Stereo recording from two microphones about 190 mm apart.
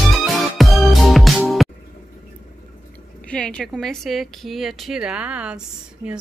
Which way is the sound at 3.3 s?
5° left (ahead or behind).